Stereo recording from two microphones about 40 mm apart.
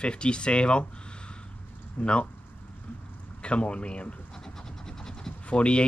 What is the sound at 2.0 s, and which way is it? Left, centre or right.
Speech, left.